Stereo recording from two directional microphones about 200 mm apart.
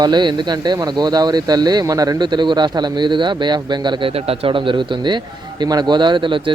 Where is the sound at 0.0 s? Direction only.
20° right (ahead or behind).